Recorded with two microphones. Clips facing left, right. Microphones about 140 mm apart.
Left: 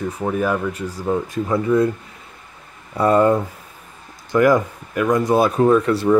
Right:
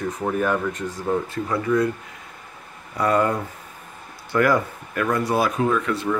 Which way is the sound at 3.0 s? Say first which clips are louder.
Left 5 dB; 25° left (ahead or behind).